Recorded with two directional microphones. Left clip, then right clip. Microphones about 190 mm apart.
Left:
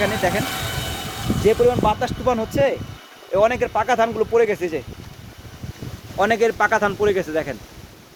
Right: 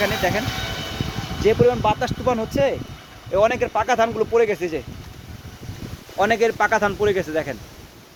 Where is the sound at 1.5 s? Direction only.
10° right (ahead or behind).